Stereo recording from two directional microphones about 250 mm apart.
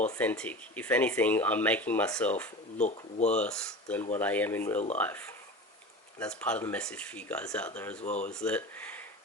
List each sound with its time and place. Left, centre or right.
0.1 s speech: centre
2.7 s speech: left
3.3 s speech: centre
8.0 s speech: left
8.3 s speech: centre